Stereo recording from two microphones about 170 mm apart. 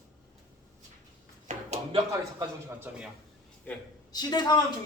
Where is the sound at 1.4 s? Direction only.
40° right (ahead or behind).